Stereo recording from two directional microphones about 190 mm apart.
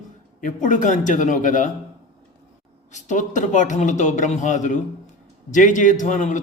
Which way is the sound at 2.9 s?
40° left (ahead or behind).